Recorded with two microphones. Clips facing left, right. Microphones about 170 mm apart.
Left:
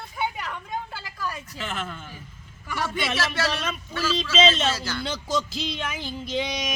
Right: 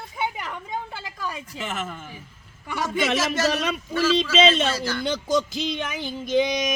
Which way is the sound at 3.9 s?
10° right (ahead or behind).